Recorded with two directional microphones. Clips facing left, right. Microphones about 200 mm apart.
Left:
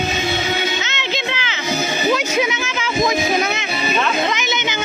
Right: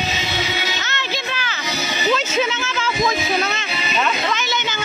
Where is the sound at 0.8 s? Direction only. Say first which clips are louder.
Left 2 dB; 20° left (ahead or behind).